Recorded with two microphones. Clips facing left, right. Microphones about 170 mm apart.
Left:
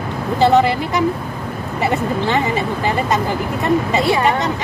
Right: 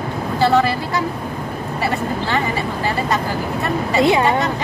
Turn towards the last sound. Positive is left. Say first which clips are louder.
# right 2 dB
turn(degrees=-20)  # may be behind; listen again after turning